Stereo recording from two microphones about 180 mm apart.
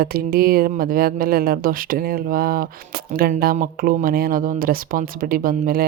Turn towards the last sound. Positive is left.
turn(degrees=-55)  # may be behind; listen again after turning